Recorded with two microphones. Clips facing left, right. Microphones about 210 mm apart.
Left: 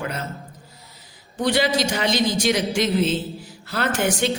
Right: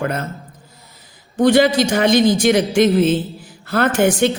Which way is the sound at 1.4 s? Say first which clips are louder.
Right 8 dB; 50° right (ahead or behind).